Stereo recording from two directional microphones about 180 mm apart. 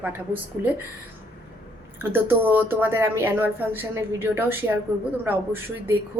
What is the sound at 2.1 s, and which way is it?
A woman's voice, 10° right (ahead or behind).